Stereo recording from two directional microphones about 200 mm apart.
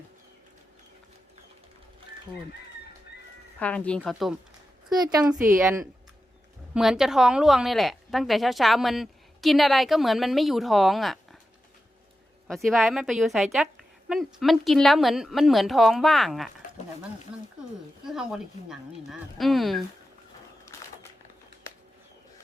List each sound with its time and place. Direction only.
3.6 s speech: 5° left (ahead or behind)
4.9 s a woman's voice: 20° right (ahead or behind)
6.7 s speech: centre (ahead or behind)
12.5 s speech: centre (ahead or behind)
18.0 s speech: centre (ahead or behind)